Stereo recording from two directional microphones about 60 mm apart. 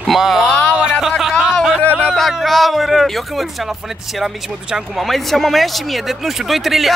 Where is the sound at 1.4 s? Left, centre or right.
Centre.